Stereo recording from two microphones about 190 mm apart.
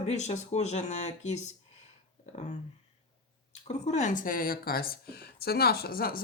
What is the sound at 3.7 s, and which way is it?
Speech, 40° left (ahead or behind).